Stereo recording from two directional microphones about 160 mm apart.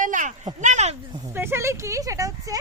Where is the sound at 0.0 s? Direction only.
50° right (ahead or behind).